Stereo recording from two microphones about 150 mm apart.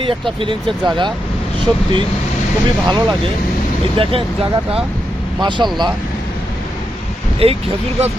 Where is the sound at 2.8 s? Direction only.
30° right (ahead or behind).